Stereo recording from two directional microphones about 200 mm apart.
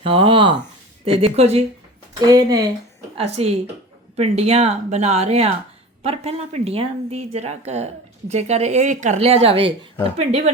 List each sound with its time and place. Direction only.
0.0 s a woman's voice: 25° right (ahead or behind)
2.2 s speech: 20° right (ahead or behind)
3.2 s a woman's voice: 30° right (ahead or behind)